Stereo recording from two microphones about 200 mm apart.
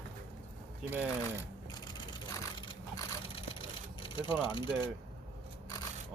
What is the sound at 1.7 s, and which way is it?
Sewing machine, 20° left (ahead or behind).